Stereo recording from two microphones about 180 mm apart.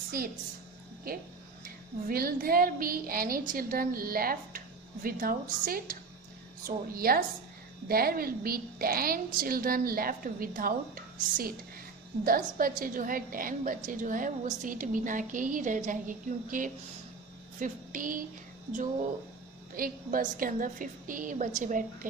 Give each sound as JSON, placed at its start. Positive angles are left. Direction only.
{"t": 1.0, "sound": "a woman's voice", "side_deg": -55}
{"t": 19.7, "sound": "a woman's voice", "side_deg": -50}